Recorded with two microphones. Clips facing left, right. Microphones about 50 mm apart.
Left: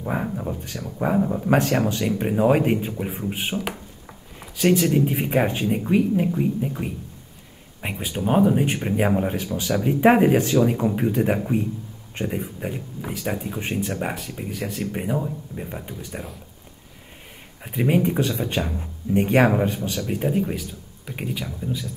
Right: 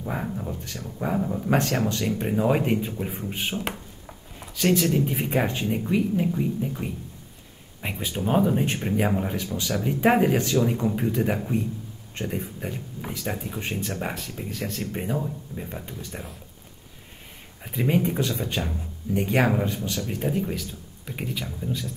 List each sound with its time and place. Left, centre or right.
0.0 s speech: centre
18.0 s speech: centre
18.7 s speech: left
19.2 s speech: centre